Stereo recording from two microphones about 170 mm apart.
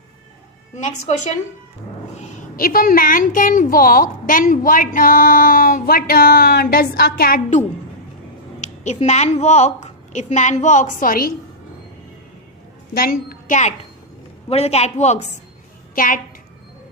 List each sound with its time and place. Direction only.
0.8 s a woman's voice: 45° left (ahead or behind)
8.8 s a woman's voice: 40° left (ahead or behind)
12.9 s a woman's voice: 60° left (ahead or behind); by 15.3 s 40° left (ahead or behind)
16.0 s a woman's voice: 55° left (ahead or behind)